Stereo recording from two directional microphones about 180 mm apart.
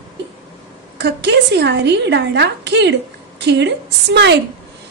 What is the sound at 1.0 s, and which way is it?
A woman's voice, 70° right (ahead or behind).